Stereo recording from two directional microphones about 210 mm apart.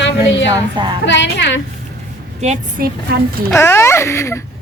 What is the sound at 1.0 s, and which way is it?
Speech, 60° left (ahead or behind).